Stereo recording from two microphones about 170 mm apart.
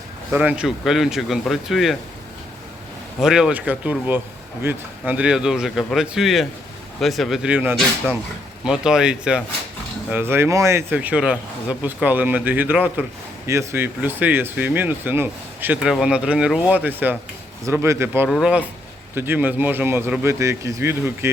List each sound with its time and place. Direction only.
0.3 s speech: 10° right (ahead or behind)
3.2 s speech: 5° right (ahead or behind)
18.3 s speech: centre (ahead or behind)